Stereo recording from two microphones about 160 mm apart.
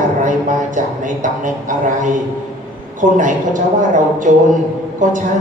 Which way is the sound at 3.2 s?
55° right (ahead or behind).